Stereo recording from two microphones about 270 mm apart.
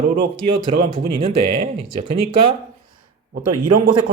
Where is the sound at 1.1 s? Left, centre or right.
Right.